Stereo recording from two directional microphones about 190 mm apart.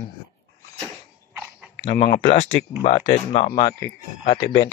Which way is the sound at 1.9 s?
50° left (ahead or behind).